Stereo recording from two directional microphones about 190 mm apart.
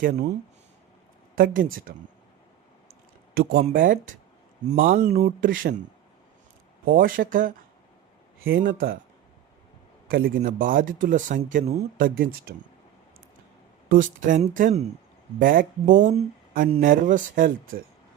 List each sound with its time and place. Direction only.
0.0 s speech: 40° right (ahead or behind)
1.4 s speech: 50° right (ahead or behind)
3.6 s speech: 40° right (ahead or behind)
6.8 s speech: 45° right (ahead or behind)
8.5 s speech: 50° right (ahead or behind)
10.1 s speech: 50° right (ahead or behind); by 12.0 s 35° right (ahead or behind)
12.0 s speech: 50° right (ahead or behind)
13.9 s speech: 45° right (ahead or behind)
16.8 s speech: 45° right (ahead or behind)